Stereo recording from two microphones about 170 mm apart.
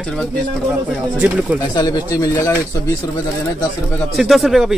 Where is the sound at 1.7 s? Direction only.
25° left (ahead or behind).